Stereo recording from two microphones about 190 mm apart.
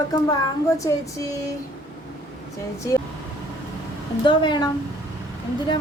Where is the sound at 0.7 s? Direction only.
15° left (ahead or behind).